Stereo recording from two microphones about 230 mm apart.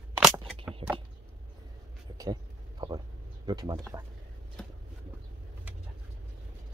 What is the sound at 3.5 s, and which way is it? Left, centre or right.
Speech, centre.